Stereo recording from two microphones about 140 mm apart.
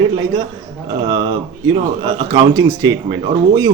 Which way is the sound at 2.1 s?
30° right (ahead or behind).